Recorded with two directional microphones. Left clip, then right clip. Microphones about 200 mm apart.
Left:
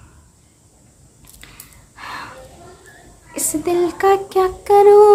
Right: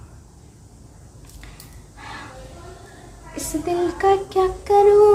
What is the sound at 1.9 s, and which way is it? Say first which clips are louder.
Gasp: left 6 dB; 40° left (ahead or behind).